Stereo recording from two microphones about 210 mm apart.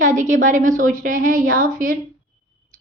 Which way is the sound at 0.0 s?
35° right (ahead or behind).